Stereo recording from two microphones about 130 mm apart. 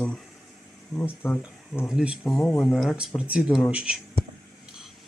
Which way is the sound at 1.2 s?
20° left (ahead or behind).